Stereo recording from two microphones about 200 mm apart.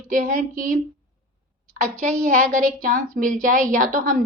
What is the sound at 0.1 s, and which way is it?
Speech, 40° right (ahead or behind).